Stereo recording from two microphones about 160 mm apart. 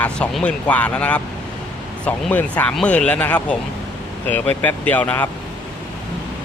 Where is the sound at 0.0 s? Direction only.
5° left (ahead or behind).